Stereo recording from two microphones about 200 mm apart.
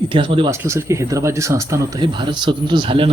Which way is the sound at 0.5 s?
15° right (ahead or behind).